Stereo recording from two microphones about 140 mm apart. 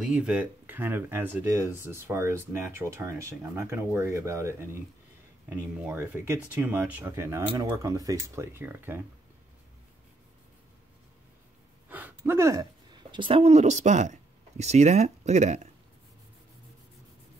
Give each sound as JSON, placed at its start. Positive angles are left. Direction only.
{"t": 0.0, "sound": "speech", "side_deg": -5}
{"t": 11.9, "sound": "speech", "side_deg": -15}